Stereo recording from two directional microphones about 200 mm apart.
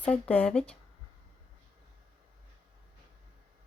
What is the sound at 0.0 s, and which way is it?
Speech, 10° left (ahead or behind).